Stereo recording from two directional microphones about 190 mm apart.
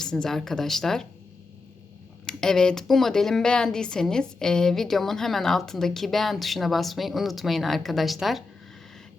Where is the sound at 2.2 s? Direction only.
5° left (ahead or behind).